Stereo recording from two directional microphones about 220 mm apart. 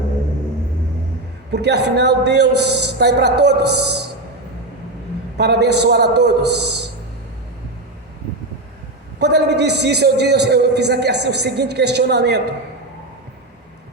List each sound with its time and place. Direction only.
1.5 s a man's voice: 50° right (ahead or behind)
5.4 s a man's voice: 50° right (ahead or behind)
9.1 s a man's voice: 50° right (ahead or behind)